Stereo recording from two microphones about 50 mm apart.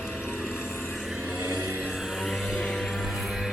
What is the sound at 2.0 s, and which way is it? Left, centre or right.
Vehicle, centre.